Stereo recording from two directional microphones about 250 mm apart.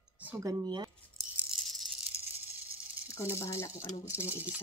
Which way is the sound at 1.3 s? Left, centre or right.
Centre.